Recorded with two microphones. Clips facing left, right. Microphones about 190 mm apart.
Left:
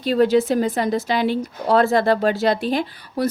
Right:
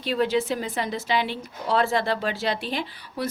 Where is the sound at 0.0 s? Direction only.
40° left (ahead or behind).